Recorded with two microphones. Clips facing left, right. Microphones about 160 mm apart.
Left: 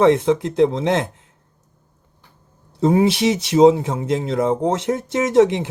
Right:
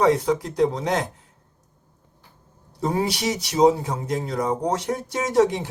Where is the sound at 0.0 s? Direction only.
25° left (ahead or behind).